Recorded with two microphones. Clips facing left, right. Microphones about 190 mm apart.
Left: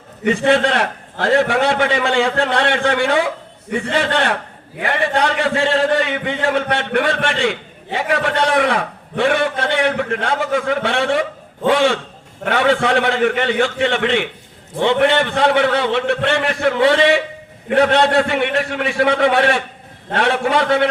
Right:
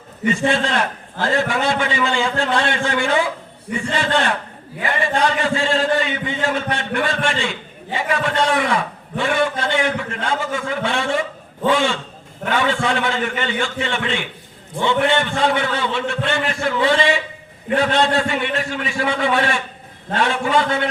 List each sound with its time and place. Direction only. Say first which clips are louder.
0.3 s a man's voice: left 4 dB; 60° left (ahead or behind)
12.5 s a man's voice: left 4 dB; 65° left (ahead or behind)